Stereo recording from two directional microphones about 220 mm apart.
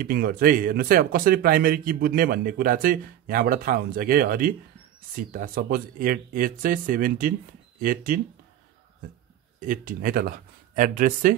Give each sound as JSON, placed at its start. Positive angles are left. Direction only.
{"t": 0.0, "sound": "speech", "side_deg": -40}
{"t": 9.6, "sound": "speech", "side_deg": -40}